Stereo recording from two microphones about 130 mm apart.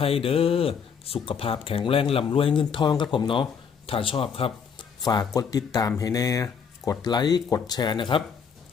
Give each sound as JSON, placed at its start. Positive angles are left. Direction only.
{"t": 0.0, "sound": "speech", "side_deg": 45}
{"t": 5.3, "sound": "speech", "side_deg": 30}